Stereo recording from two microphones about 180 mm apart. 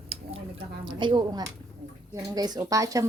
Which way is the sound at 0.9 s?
25° right (ahead or behind).